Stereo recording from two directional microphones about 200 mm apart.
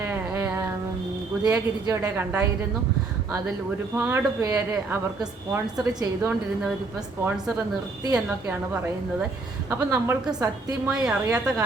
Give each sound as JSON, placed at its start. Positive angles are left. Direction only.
{"t": 0.0, "sound": "a sound", "side_deg": -10}
{"t": 1.5, "sound": "a woman's voice", "side_deg": -15}
{"t": 3.9, "sound": "a woman's voice", "side_deg": -10}
{"t": 8.0, "sound": "a woman's voice", "side_deg": -15}